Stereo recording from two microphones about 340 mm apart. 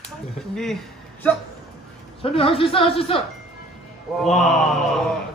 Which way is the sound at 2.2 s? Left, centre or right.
Centre.